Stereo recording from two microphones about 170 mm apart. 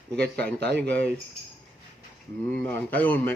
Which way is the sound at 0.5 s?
80° right.